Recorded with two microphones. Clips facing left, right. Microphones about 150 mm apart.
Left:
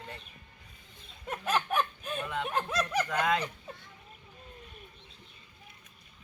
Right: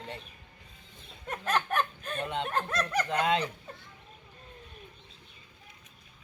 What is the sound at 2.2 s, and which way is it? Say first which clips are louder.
Speech: right 2 dB; 25° right (ahead or behind).